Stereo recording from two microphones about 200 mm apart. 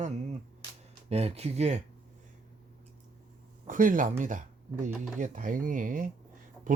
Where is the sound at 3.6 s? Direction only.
40° right (ahead or behind).